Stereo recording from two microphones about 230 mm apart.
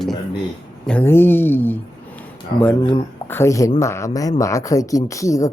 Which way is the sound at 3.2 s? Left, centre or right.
Centre.